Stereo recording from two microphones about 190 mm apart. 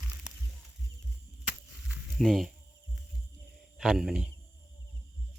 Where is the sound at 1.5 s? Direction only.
Centre (ahead or behind).